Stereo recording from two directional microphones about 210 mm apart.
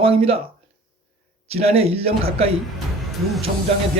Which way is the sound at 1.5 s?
30° right (ahead or behind).